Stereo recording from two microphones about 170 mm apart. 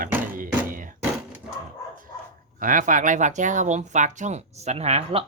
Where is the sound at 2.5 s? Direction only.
50° right (ahead or behind).